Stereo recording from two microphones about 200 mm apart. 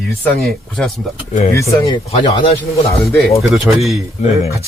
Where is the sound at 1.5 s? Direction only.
15° left (ahead or behind).